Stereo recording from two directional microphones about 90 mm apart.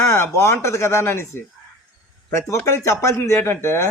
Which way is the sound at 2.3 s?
30° left (ahead or behind).